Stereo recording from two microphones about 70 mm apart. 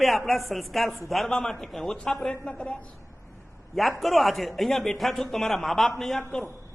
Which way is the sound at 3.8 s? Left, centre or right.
Centre.